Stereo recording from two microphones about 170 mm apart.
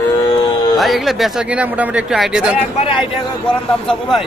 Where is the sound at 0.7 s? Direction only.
Centre (ahead or behind).